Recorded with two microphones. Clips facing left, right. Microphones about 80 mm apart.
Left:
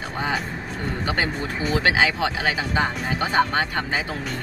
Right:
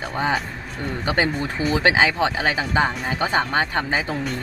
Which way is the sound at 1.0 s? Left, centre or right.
Right.